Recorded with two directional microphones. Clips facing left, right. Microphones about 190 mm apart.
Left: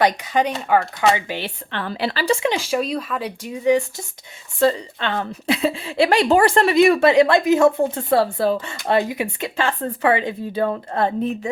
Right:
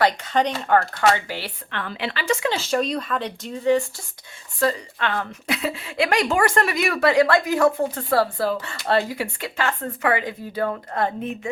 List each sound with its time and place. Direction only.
0.0 s speech: 10° left (ahead or behind)
0.5 s speech: centre (ahead or behind)
1.1 s speech: 20° left (ahead or behind); by 2.4 s 35° left (ahead or behind)
2.4 s speech: 10° left (ahead or behind)
4.6 s a woman's voice: 25° left (ahead or behind)